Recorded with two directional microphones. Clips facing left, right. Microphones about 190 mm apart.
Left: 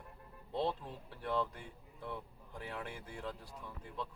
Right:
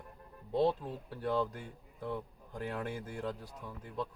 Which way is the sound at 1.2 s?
40° right (ahead or behind).